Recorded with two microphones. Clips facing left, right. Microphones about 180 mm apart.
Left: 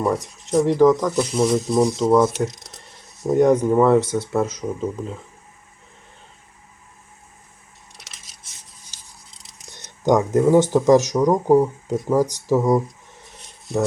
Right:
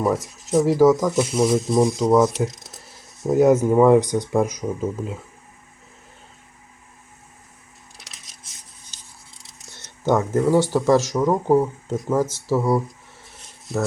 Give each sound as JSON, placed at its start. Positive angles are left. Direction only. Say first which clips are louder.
{"t": 0.0, "sound": "speech", "louder": "even", "side_deg": 0}
{"t": 7.9, "sound": "coin", "louder": "even", "side_deg": 0}
{"t": 9.6, "sound": "speech", "louder": "left 3 dB", "side_deg": 15}
{"t": 13.7, "sound": "speech", "louder": "left 3 dB", "side_deg": 0}